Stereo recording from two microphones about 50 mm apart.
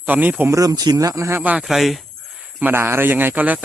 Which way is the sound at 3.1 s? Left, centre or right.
Right.